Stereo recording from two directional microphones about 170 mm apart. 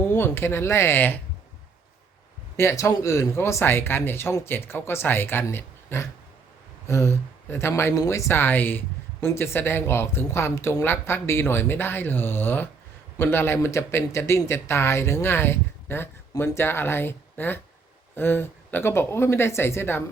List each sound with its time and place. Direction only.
0.0 s speech: 15° left (ahead or behind)
2.6 s speech: 15° left (ahead or behind)